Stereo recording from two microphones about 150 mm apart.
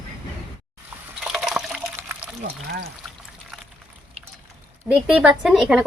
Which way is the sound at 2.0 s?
15° right (ahead or behind).